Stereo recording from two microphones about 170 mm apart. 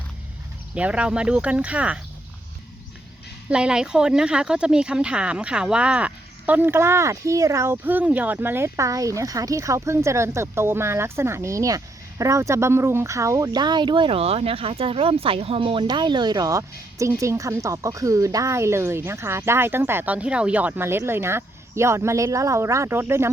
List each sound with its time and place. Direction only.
0.7 s speech: 5° right (ahead or behind)
3.5 s speech: 5° right (ahead or behind)